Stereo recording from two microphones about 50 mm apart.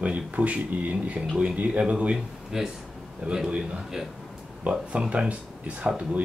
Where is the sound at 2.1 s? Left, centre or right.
Centre.